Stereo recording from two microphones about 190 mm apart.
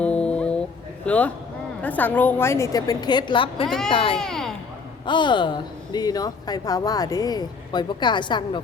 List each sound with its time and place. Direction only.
0.0 s music: 5° left (ahead or behind)
1.0 s a man's voice: 5° left (ahead or behind); by 4.2 s 30° left (ahead or behind)
4.2 s a sound: centre (ahead or behind)
5.0 s speech: 25° left (ahead or behind)